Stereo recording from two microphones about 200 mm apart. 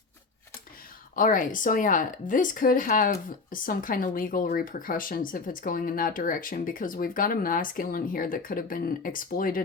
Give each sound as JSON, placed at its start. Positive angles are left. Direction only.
{"t": 1.1, "sound": "speech", "side_deg": 45}